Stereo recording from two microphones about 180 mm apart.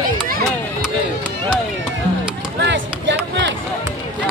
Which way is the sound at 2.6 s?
80° right.